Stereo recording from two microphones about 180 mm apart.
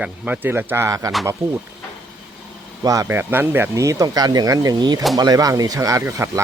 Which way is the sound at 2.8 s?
20° right (ahead or behind).